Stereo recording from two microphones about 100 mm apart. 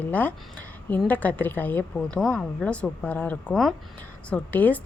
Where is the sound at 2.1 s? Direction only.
5° left (ahead or behind).